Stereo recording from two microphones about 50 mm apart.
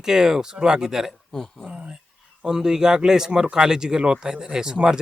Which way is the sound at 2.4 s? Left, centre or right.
Centre.